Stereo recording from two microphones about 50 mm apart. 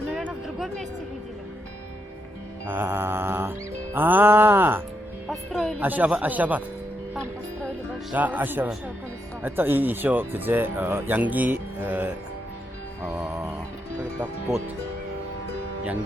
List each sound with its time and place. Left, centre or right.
0.4 s a sound: centre
2.6 s mantra: right
3.9 s music: right
5.3 s music: centre
5.8 s speech: right
8.1 s speech: right